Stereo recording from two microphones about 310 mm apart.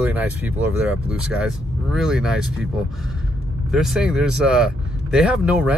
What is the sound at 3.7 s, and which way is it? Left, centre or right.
Speech, centre.